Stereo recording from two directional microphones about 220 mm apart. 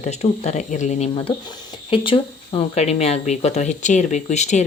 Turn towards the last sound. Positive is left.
turn(degrees=30)  # may be behind; listen again after turning